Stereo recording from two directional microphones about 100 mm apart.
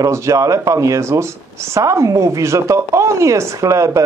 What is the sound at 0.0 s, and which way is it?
Speech, 30° right (ahead or behind).